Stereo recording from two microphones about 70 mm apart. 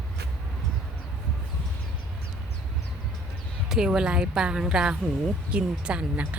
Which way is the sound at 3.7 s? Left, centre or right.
Centre.